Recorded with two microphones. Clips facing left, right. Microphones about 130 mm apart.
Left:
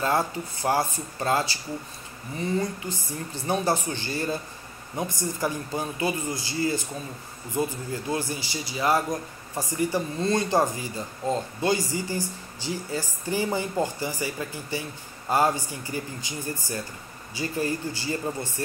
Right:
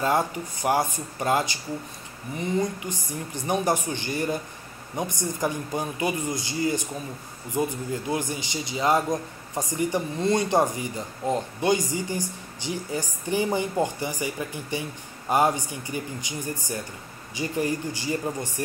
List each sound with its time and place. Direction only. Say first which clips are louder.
0.0 s a man's voice: right 1 dB; 20° right (ahead or behind)